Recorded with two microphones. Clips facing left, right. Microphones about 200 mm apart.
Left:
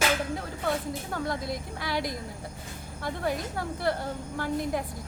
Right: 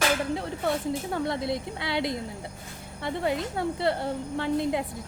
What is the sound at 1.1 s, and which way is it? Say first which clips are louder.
A woman's voice: right 1 dB; 25° right (ahead or behind).